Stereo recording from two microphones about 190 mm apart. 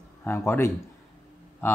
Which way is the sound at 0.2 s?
10° left (ahead or behind).